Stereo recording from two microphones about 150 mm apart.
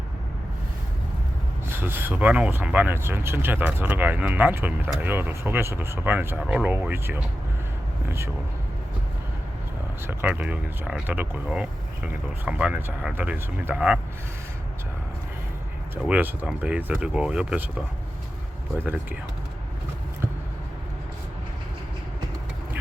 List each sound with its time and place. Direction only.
1.7 s speech: 15° right (ahead or behind)
10.1 s speech: 10° right (ahead or behind)
16.0 s speech: 10° right (ahead or behind)